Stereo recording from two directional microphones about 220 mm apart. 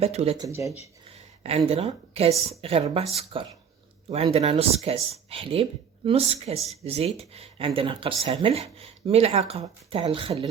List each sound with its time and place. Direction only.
0.0 s speech: 30° right (ahead or behind)
0.4 s speech: 15° right (ahead or behind)
1.1 s a woman's voice: 25° right (ahead or behind)